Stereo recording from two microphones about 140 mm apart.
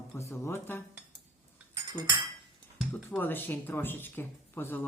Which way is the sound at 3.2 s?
15° left (ahead or behind).